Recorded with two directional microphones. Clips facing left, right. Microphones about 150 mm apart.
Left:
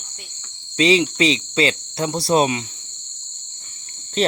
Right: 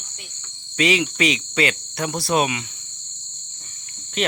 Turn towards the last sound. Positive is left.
turn(degrees=35)  # may be behind; listen again after turning